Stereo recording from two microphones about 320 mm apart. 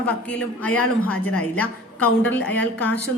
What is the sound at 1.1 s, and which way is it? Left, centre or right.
Speech, left.